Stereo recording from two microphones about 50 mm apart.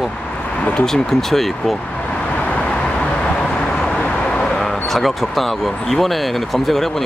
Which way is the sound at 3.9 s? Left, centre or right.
Centre.